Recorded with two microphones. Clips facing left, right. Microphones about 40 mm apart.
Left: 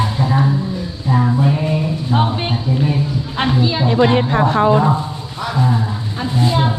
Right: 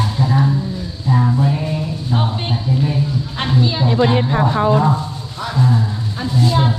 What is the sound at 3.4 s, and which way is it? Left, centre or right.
Speech, centre.